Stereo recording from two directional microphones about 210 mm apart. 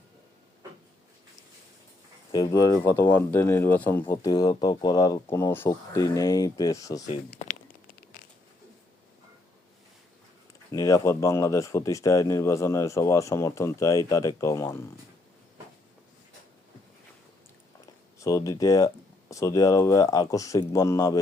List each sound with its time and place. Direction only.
2.3 s speech: 20° left (ahead or behind)
7.4 s a sound: 35° left (ahead or behind)
10.7 s speech: 15° left (ahead or behind)
18.2 s speech: 15° left (ahead or behind)